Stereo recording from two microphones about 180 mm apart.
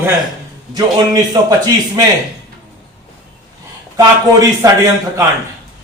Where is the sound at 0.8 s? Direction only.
20° right (ahead or behind).